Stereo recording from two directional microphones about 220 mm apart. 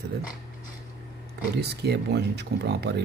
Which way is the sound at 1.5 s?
50° right (ahead or behind).